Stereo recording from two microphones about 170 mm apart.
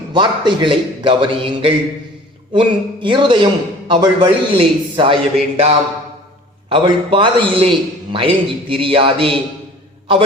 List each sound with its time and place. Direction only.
0.1 s a man's voice: 25° right (ahead or behind)